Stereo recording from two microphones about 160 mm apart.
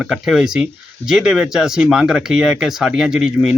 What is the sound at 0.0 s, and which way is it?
Speech, 5° right (ahead or behind).